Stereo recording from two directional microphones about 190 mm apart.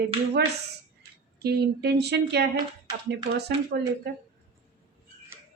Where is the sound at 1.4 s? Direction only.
60° right (ahead or behind).